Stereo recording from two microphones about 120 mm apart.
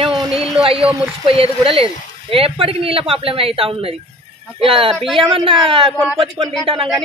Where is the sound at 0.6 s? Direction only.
50° right (ahead or behind).